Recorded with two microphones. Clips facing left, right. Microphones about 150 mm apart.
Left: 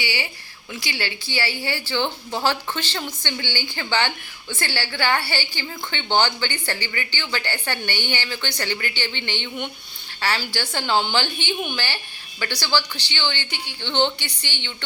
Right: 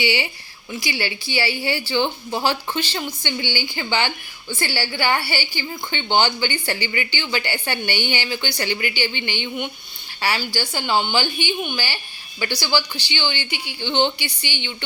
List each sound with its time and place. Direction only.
0.0 s a woman's voice: 15° right (ahead or behind)